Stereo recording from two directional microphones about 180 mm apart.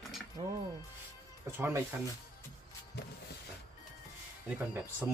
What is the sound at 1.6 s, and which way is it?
Speech, 10° right (ahead or behind).